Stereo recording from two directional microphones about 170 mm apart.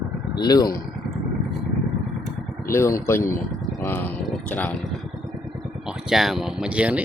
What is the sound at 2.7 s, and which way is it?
Speech, 15° left (ahead or behind).